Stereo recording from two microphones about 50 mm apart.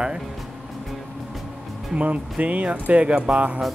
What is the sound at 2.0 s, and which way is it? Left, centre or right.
Speech, right.